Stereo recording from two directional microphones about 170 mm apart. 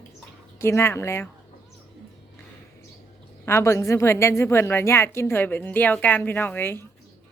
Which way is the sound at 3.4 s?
15° left (ahead or behind).